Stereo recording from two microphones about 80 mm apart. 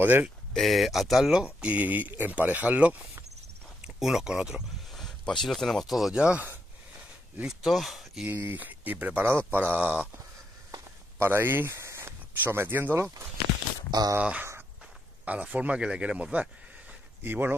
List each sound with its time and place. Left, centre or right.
0.0 s speech: right
0.5 s speech: centre; by 3.3 s right
3.8 s speech: centre
5.0 s speech: centre
7.4 s speech: centre
8.3 s speech: right
11.1 s speech: right
13.8 s speech: right
15.2 s speech: centre
17.2 s speech: right